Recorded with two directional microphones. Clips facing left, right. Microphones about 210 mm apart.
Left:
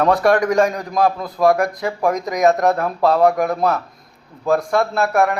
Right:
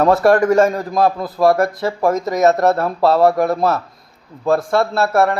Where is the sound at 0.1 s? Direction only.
5° right (ahead or behind).